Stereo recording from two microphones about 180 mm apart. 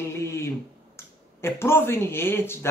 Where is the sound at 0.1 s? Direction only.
15° left (ahead or behind).